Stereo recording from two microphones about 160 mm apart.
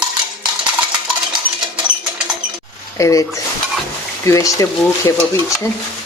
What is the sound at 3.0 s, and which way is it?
Speech, 20° left (ahead or behind).